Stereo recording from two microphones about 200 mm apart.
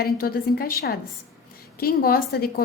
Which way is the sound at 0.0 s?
50° left (ahead or behind).